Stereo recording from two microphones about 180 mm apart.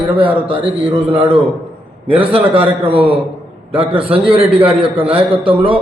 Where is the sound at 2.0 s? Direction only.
30° right (ahead or behind).